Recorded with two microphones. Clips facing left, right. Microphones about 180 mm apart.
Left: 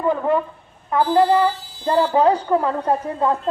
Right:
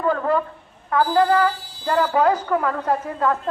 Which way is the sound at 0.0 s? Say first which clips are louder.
Left 1 dB; 15° left (ahead or behind).